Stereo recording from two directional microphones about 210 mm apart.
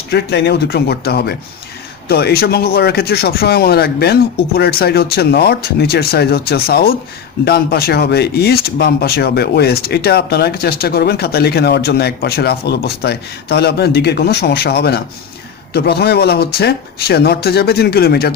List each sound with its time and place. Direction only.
0.1 s speech: 50° left (ahead or behind)